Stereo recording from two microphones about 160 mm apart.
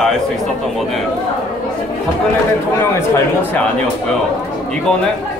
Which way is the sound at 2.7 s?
15° left (ahead or behind).